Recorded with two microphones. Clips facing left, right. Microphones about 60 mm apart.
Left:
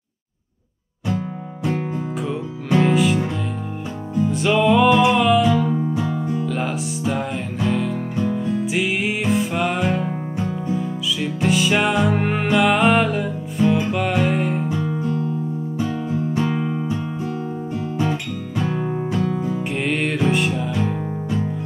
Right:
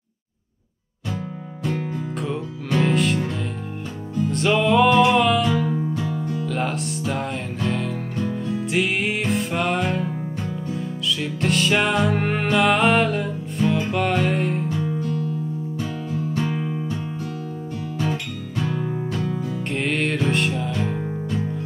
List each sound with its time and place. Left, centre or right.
1.0 s music: centre
2.9 s music: centre
4.3 s music: centre
6.4 s music: centre
15.0 s music: centre
16.3 s music: centre
18.7 s music: left
19.7 s music: centre